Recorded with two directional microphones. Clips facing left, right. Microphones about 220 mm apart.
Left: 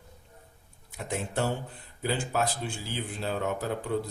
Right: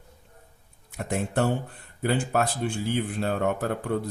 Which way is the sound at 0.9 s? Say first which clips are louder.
Right 5 dB; 55° right (ahead or behind).